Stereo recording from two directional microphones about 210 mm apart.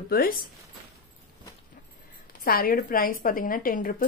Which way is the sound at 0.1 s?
45° left (ahead or behind).